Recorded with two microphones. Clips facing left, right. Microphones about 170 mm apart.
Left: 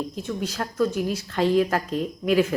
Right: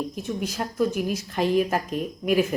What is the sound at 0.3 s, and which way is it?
Speech, 15° right (ahead or behind).